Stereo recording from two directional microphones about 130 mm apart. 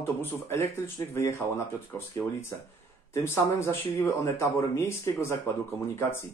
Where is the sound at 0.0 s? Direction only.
20° left (ahead or behind).